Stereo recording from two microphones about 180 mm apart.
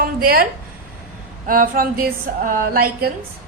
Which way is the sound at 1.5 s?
50° right (ahead or behind).